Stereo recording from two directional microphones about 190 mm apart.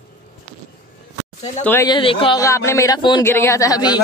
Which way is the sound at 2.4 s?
15° left (ahead or behind).